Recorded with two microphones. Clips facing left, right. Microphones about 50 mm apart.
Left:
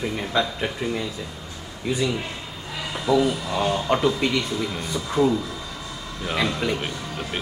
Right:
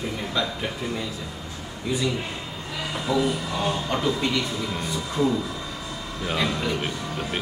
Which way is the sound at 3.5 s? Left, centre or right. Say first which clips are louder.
Left 4 dB; left.